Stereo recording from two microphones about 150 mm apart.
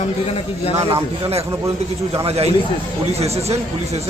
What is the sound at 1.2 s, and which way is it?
A man's voice, 40° right (ahead or behind).